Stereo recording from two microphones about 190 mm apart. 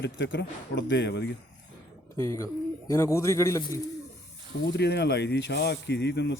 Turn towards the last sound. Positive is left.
turn(degrees=65)  # may be behind; listen again after turning